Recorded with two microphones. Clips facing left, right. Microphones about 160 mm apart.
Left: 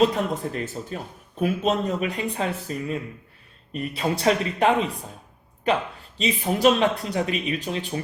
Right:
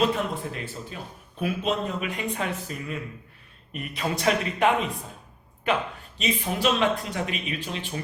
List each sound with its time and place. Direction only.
0.0 s speech: 40° left (ahead or behind)
6.1 s speech: 35° left (ahead or behind)